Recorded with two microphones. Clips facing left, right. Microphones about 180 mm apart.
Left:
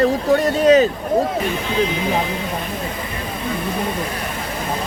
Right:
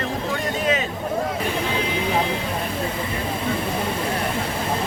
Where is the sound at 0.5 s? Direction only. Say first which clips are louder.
Left 11 dB; 40° left (ahead or behind).